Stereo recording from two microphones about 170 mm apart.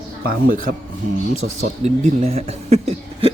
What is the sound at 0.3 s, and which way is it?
Speech, 50° right (ahead or behind).